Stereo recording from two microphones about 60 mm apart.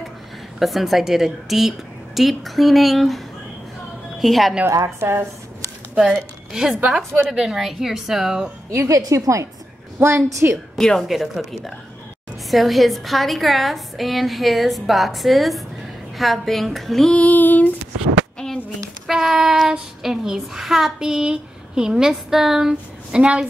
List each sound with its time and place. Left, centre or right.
0.6 s a woman's voice: centre
4.2 s a woman's voice: centre
4.8 s a woman's voice: right
6.9 s a woman's voice: centre
8.7 s a woman's voice: right
10.0 s a woman's voice: right
10.8 s a woman's voice: centre
11.1 s a woman's voice: centre
17.1 s female singing: left
19.0 s child singing: centre